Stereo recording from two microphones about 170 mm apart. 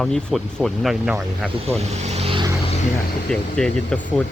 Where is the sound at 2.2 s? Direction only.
30° right (ahead or behind).